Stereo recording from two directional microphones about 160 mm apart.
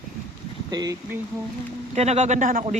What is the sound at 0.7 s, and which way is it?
Speech, 25° right (ahead or behind).